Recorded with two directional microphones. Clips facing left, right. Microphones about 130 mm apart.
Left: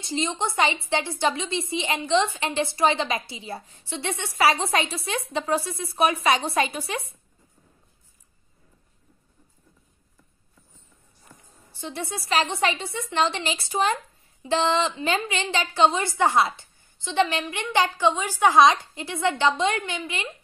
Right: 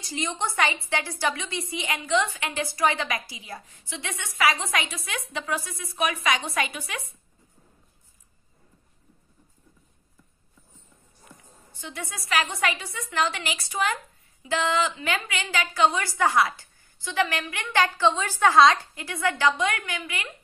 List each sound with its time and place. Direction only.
0.0 s a woman's voice: 25° left (ahead or behind)
11.7 s a woman's voice: 30° left (ahead or behind)